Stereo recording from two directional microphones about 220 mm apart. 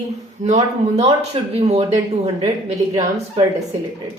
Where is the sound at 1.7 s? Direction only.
30° right (ahead or behind).